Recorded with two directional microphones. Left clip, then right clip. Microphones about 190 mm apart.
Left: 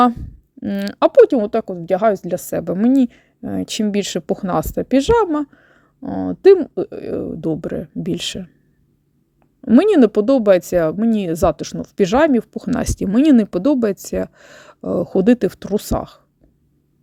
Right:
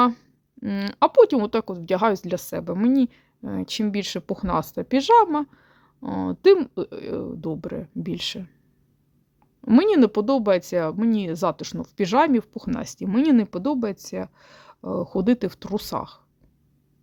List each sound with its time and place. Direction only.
0.1 s a sound: 10° left (ahead or behind)
0.9 s speech: 15° left (ahead or behind)
6.0 s speech: centre (ahead or behind)
9.6 s speech: 10° left (ahead or behind)
12.7 s speech: 25° left (ahead or behind)